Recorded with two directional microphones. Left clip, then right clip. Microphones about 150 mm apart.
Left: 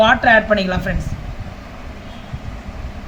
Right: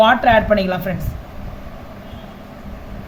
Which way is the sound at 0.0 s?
25° right (ahead or behind).